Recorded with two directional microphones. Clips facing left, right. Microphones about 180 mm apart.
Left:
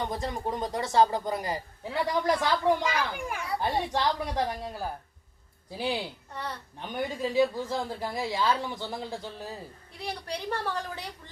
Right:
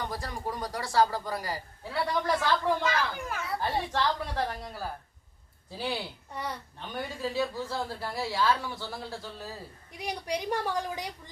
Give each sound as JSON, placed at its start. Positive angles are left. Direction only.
{"t": 0.0, "sound": "a man's voice", "side_deg": 20}
{"t": 10.0, "sound": "a woman's voice", "side_deg": -15}